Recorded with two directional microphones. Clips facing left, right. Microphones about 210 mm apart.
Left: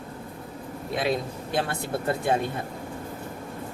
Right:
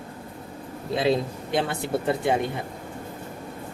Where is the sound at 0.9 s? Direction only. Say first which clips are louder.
Right 4 dB; 25° right (ahead or behind).